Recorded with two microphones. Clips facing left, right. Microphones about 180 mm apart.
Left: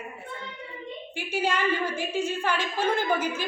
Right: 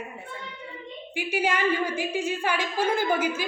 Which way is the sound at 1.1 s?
10° right (ahead or behind).